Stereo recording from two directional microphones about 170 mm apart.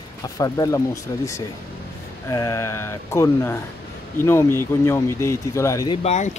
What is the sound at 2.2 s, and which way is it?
Speech, 20° left (ahead or behind).